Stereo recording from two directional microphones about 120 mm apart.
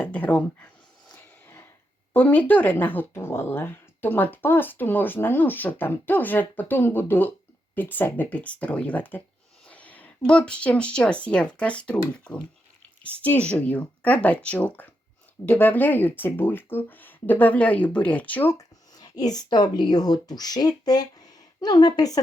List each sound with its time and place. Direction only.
0.0 s speech: 10° left (ahead or behind)
2.1 s speech: 15° left (ahead or behind)
18.5 s speech: 35° left (ahead or behind)